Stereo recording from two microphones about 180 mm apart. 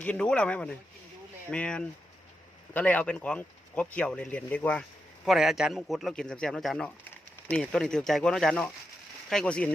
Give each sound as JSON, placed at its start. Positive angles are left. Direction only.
{"t": 0.0, "sound": "speech", "side_deg": 5}